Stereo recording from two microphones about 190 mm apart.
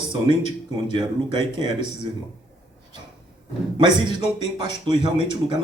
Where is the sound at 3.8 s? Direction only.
25° right (ahead or behind).